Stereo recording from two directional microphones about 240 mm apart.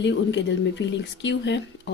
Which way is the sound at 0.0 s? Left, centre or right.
Left.